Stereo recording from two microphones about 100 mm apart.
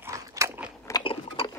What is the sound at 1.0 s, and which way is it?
Dishes, 65° left (ahead or behind).